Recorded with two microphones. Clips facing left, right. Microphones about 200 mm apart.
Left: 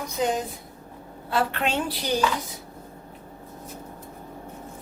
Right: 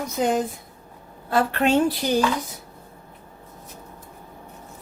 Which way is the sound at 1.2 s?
45° right (ahead or behind).